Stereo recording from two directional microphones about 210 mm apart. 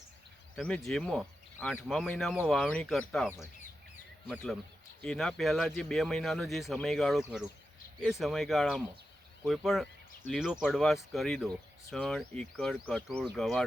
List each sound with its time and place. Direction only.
0.5 s speech: 5° left (ahead or behind)
5.0 s speech: centre (ahead or behind)